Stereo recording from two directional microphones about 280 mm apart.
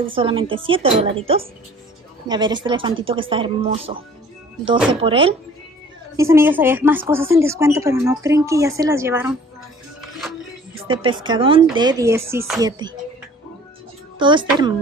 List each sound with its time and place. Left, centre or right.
0.1 s a woman's voice: centre
5.0 s speech: centre
6.1 s a woman's voice: centre
10.9 s a woman's voice: centre
14.1 s a woman's voice: centre